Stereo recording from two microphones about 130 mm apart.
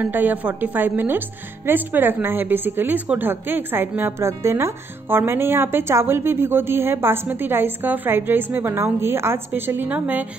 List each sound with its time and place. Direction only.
0.0 s a woman's voice: 15° right (ahead or behind)